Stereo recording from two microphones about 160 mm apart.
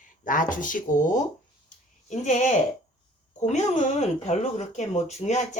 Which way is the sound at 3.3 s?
45° left (ahead or behind).